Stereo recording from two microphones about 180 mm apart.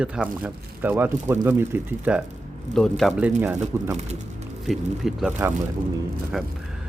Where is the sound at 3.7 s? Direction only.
15° right (ahead or behind).